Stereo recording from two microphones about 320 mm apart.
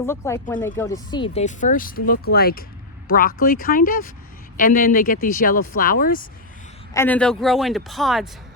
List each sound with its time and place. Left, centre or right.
0.0 s speech: centre; by 6.2 s left
6.9 s a man's voice: centre